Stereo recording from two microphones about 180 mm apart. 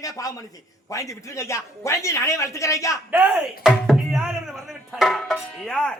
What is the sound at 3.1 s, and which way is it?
Speech, 10° right (ahead or behind).